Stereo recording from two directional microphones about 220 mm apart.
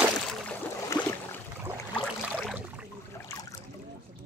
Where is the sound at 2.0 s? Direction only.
Centre (ahead or behind).